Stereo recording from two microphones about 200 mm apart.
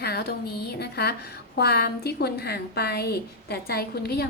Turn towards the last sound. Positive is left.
turn(degrees=55)  # may be behind; listen again after turning